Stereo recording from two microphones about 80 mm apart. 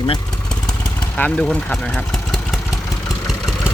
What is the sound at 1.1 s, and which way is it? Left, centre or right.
Speech, centre.